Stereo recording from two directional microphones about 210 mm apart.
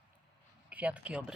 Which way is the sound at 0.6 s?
5° right (ahead or behind).